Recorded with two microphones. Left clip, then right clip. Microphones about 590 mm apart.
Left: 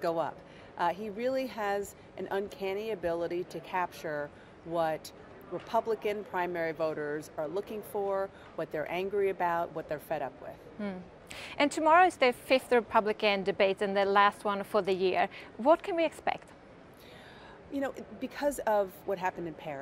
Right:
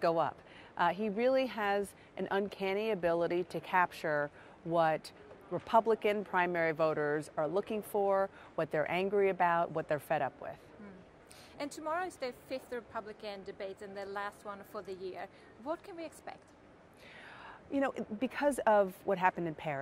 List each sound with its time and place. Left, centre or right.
0.0 s speech: right
11.3 s speech: left
17.7 s speech: right